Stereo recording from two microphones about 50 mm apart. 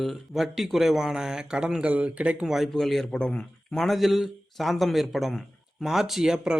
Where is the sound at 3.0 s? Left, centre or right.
Centre.